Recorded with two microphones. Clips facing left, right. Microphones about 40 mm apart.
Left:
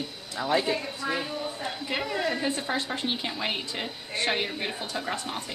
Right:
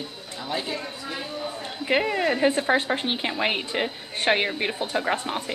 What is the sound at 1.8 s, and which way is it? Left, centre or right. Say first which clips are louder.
A woman's voice: right 7 dB; right.